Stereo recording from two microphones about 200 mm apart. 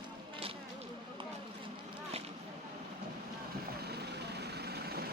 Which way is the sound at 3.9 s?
55° right (ahead or behind).